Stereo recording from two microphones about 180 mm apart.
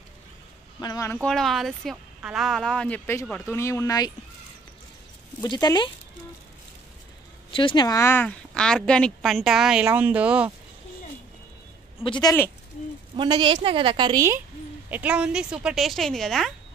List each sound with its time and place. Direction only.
0.7 s a woman's voice: 20° left (ahead or behind)
5.4 s speech: 20° left (ahead or behind)
7.5 s a woman's voice: 25° left (ahead or behind); by 10.5 s 5° right (ahead or behind)
12.0 s speech: 25° left (ahead or behind)
13.1 s a woman's voice: 25° right (ahead or behind)
14.9 s a woman's voice: 10° right (ahead or behind)